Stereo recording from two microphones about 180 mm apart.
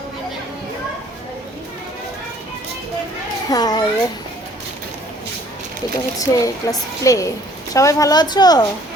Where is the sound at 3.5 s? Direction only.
20° left (ahead or behind).